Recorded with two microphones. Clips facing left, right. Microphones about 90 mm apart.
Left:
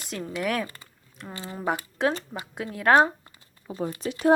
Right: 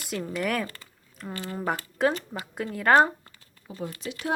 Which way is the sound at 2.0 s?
Centre (ahead or behind).